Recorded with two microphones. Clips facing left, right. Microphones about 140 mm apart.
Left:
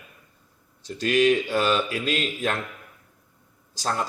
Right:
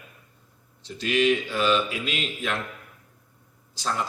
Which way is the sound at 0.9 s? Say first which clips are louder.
Left 2 dB; 45° left (ahead or behind).